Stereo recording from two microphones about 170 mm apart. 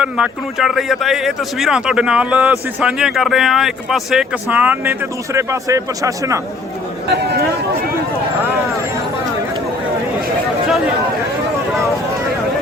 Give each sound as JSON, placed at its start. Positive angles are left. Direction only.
{"t": 0.0, "sound": "speech", "side_deg": -5}
{"t": 7.1, "sound": "speech", "side_deg": -70}